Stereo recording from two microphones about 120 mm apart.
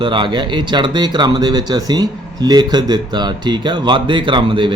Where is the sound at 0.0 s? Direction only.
40° right (ahead or behind).